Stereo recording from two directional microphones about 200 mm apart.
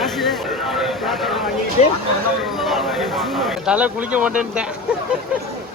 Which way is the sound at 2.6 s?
Centre (ahead or behind).